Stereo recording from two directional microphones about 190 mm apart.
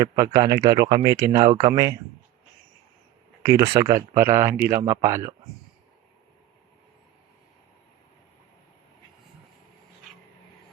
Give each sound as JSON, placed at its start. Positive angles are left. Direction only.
{"t": 0.0, "sound": "speech", "side_deg": -20}
{"t": 3.4, "sound": "speech", "side_deg": -20}